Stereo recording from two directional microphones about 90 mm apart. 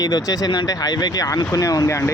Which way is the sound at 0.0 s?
45° left (ahead or behind).